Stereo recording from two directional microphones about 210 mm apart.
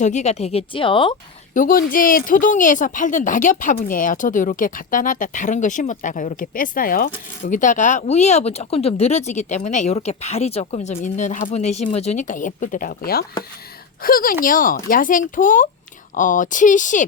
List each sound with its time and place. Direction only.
0.0 s speech: 35° left (ahead or behind)
1.5 s speech: 40° left (ahead or behind)